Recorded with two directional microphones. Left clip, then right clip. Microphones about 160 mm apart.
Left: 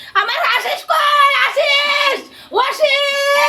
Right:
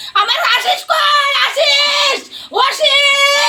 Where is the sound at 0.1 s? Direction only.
10° left (ahead or behind).